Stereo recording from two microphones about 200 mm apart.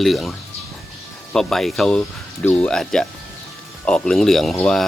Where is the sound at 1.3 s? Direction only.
Centre (ahead or behind).